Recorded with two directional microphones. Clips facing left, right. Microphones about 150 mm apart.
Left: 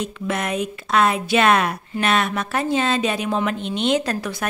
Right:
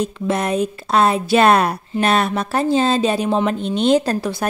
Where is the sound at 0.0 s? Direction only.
35° right (ahead or behind).